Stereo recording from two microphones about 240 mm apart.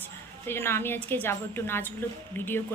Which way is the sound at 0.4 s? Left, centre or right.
Centre.